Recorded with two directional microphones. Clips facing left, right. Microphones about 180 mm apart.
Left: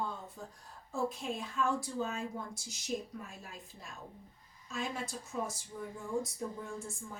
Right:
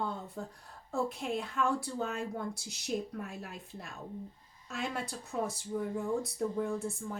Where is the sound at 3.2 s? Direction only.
65° right (ahead or behind).